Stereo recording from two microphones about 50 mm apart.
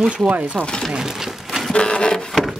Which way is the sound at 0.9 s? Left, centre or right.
Centre.